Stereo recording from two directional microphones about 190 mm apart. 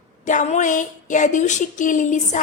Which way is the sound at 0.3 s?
40° left (ahead or behind).